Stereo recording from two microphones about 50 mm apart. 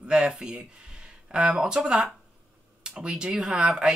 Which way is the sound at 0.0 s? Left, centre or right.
Centre.